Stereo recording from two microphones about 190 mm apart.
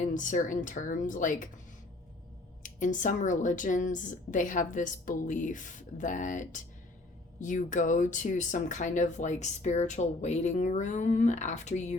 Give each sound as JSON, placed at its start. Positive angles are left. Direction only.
{"t": 0.0, "sound": "speech", "side_deg": 40}
{"t": 2.6, "sound": "speech", "side_deg": 40}